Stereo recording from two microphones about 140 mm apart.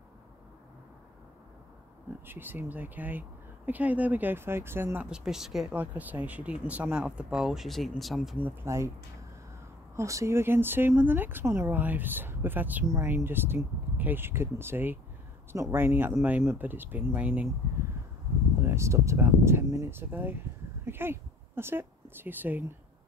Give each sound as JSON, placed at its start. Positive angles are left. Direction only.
{"t": 2.2, "sound": "speech", "side_deg": -15}
{"t": 8.4, "sound": "speech", "side_deg": -15}
{"t": 9.9, "sound": "speech", "side_deg": -20}
{"t": 18.6, "sound": "speech", "side_deg": -20}